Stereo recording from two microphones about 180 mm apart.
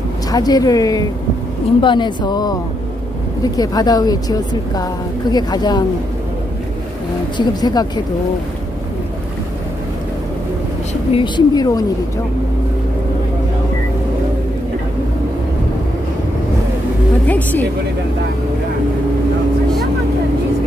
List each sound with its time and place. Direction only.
0.3 s a woman's voice: 20° left (ahead or behind)
3.5 s a woman's voice: 20° left (ahead or behind)
7.3 s a woman's voice: 25° left (ahead or behind)
11.1 s a woman's voice: 25° left (ahead or behind)
17.3 s speech: 10° left (ahead or behind)